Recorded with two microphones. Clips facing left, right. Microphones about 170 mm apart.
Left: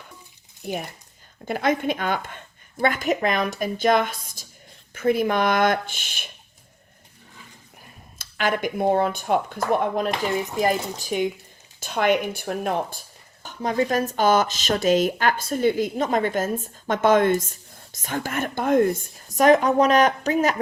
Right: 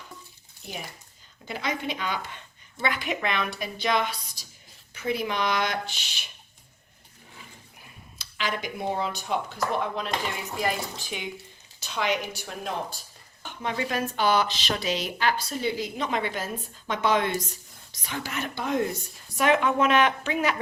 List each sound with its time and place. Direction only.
0.6 s speech: 55° left (ahead or behind)
8.2 s a woman's voice: 50° left (ahead or behind)
13.4 s speech: 40° left (ahead or behind)